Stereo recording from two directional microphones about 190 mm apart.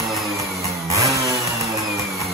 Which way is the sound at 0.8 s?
15° right (ahead or behind).